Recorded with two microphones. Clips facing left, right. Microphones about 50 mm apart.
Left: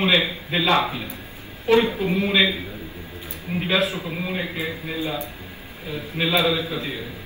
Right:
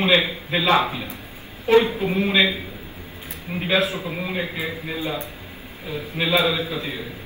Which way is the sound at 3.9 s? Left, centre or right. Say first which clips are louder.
Right 1 dB; centre.